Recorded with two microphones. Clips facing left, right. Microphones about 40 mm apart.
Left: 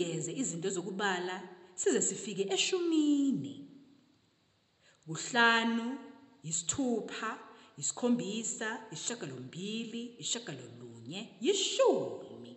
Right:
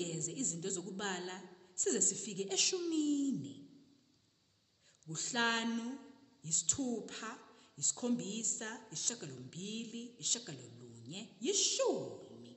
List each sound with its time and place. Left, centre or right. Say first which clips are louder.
0.0 s speech: left 6 dB; left
5.0 s speech: left 8 dB; left